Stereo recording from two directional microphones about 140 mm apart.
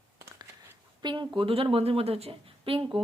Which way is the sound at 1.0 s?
35° right (ahead or behind).